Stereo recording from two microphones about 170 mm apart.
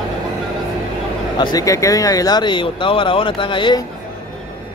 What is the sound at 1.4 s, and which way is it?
A man's voice, 20° left (ahead or behind).